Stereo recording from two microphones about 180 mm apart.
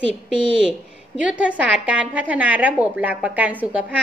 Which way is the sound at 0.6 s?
5° right (ahead or behind).